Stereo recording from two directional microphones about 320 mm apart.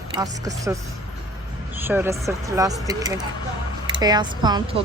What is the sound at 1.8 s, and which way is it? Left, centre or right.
Speech, centre.